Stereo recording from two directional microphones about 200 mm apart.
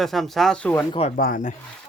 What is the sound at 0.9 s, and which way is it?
Speech, 30° left (ahead or behind).